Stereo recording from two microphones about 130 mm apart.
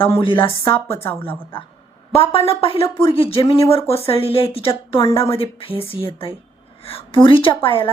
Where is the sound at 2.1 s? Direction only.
45° left (ahead or behind).